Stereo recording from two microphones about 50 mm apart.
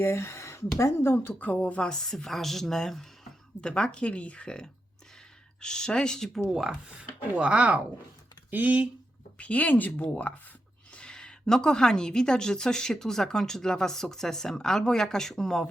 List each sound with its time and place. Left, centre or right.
0.0 s speech: left
1.4 s a woman's voice: left
1.8 s speech: centre
6.4 s speech: centre
8.4 s speech: right
9.4 s a woman's voice: left
10.9 s speech: centre